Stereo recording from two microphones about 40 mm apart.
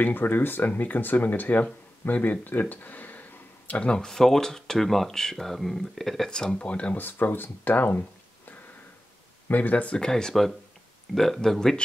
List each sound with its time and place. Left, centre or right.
0.0 s speech: left
0.7 s speech: left
2.4 s a sound: left
3.8 s speech: left
4.1 s speech: centre
6.6 s speech: left
7.0 s speech: left
9.5 s speech: left
9.9 s speech: centre
11.1 s speech: centre